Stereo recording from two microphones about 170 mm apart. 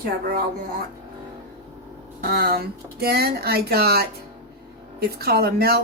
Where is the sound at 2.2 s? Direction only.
65° right (ahead or behind).